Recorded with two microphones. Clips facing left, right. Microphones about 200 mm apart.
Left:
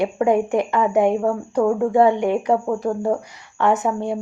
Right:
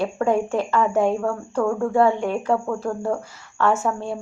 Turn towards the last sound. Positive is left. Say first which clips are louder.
# left 3 dB
turn(degrees=15)  # may be behind; listen again after turning